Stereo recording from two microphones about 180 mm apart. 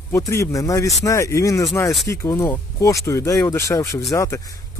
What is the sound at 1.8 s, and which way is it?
Speech, centre (ahead or behind).